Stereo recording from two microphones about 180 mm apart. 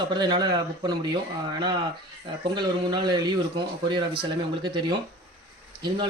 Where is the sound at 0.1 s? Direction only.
25° right (ahead or behind).